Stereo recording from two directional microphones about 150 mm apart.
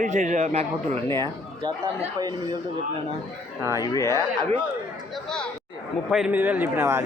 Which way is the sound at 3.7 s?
25° left (ahead or behind).